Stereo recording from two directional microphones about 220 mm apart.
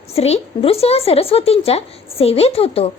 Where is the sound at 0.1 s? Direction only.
30° left (ahead or behind).